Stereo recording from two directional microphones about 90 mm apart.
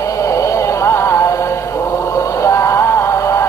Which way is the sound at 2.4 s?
35° left (ahead or behind).